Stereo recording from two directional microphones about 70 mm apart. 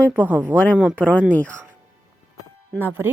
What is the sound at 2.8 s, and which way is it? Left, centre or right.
Speech, right.